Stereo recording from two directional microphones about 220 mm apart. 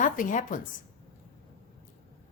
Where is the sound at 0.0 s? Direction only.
35° left (ahead or behind).